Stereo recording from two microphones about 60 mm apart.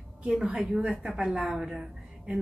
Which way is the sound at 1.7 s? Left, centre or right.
Centre.